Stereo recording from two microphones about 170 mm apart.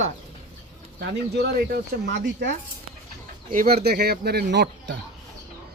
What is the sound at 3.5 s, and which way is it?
Speech, 60° right (ahead or behind).